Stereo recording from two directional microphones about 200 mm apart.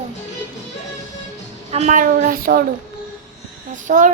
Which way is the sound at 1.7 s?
35° right (ahead or behind).